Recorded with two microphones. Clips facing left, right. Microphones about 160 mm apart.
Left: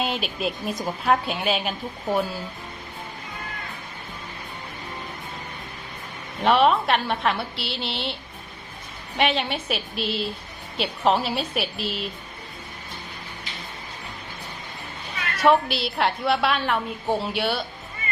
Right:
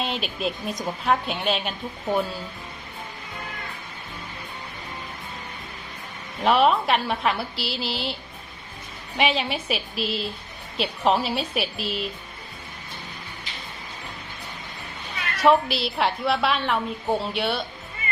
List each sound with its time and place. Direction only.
0.0 s a woman's voice: centre (ahead or behind)
6.4 s a woman's voice: centre (ahead or behind)
9.1 s a woman's voice: centre (ahead or behind)
15.4 s a woman's voice: centre (ahead or behind)